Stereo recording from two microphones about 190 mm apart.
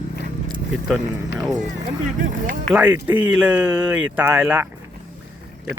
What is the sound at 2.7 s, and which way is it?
Speech, 5° right (ahead or behind).